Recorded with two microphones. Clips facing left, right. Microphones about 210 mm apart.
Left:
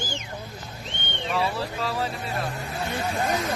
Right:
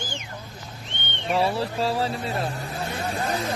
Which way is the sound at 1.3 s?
30° right (ahead or behind).